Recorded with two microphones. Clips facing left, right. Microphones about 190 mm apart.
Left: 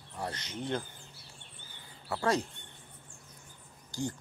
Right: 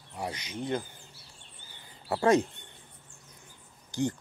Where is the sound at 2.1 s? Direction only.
25° right (ahead or behind).